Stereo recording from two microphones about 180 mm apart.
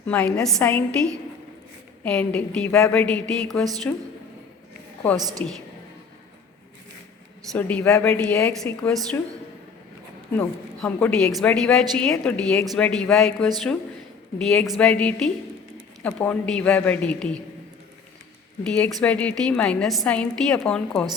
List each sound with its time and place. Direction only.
0.0 s a woman's voice: 10° left (ahead or behind)
5.1 s a woman's voice: 20° right (ahead or behind)
7.5 s a woman's voice: 10° left (ahead or behind)
10.3 s a woman's voice: 10° left (ahead or behind)
18.7 s a woman's voice: 5° left (ahead or behind)